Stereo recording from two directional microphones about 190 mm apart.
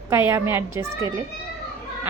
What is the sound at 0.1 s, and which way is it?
A woman's voice, 10° right (ahead or behind).